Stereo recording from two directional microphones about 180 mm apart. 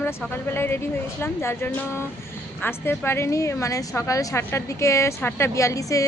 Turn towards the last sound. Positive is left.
turn(degrees=20)  # may be behind; listen again after turning